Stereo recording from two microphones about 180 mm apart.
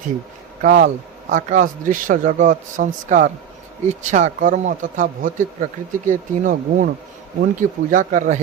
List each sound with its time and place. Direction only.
0.6 s speech: 55° right (ahead or behind)